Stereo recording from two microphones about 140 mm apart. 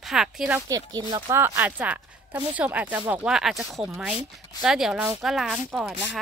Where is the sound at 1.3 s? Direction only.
15° right (ahead or behind).